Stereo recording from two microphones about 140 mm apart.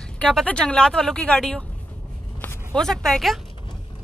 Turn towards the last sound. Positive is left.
turn(degrees=0)  # may be behind; listen again after turning